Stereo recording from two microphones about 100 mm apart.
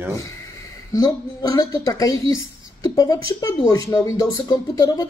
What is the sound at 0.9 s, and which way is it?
Speech, 40° left (ahead or behind).